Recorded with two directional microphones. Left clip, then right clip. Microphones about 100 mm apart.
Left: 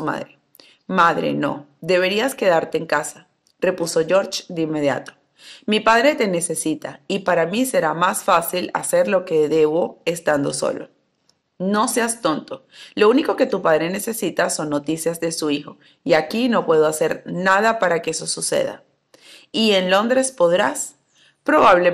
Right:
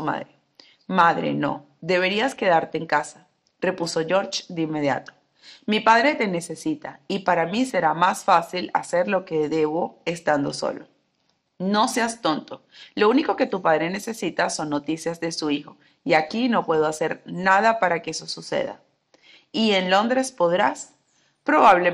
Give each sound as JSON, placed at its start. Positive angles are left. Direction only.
{"t": 0.0, "sound": "speech", "side_deg": 35}
{"t": 11.5, "sound": "speech", "side_deg": 30}